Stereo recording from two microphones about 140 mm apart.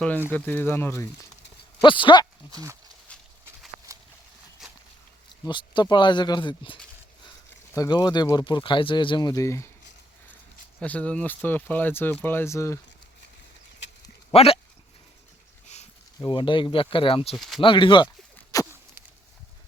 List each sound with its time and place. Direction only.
0.3 s speech: 15° left (ahead or behind)
1.8 s speech: 35° left (ahead or behind)
2.5 s speech: 25° right (ahead or behind)
3.9 s a sound: 25° right (ahead or behind)
4.6 s a sound: centre (ahead or behind)
5.5 s speech: 35° left (ahead or behind)
10.8 s speech: 10° left (ahead or behind)
14.3 s speech: 45° left (ahead or behind)
15.7 s a sound: 55° left (ahead or behind)
16.1 s speech: 30° left (ahead or behind)
17.3 s speech: centre (ahead or behind)
17.6 s speech: 35° left (ahead or behind)
18.5 s a sound: 25° left (ahead or behind)